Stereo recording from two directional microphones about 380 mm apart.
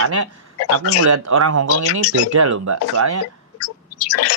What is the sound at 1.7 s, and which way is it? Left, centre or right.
Speech, left.